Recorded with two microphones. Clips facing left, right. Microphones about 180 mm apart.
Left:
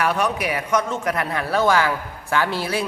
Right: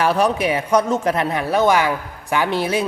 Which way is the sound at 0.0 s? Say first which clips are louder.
Right 4 dB; 30° right (ahead or behind).